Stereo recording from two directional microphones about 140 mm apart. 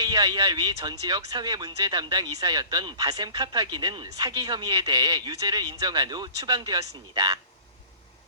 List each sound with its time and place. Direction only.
0.0 s speech: 30° right (ahead or behind)